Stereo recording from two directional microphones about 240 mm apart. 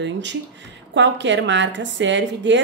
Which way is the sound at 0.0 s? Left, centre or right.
Right.